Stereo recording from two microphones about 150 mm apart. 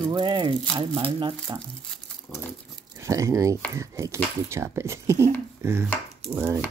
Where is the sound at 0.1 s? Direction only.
30° right (ahead or behind).